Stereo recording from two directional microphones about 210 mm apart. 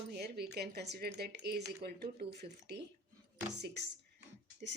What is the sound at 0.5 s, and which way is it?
Speech, 50° right (ahead or behind).